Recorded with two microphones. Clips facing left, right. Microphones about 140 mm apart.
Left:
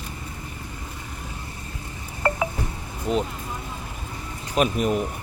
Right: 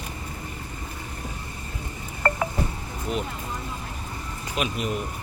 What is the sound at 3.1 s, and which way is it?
Vehicle, 40° left (ahead or behind).